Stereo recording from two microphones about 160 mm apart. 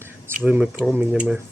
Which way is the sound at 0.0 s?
10° right (ahead or behind).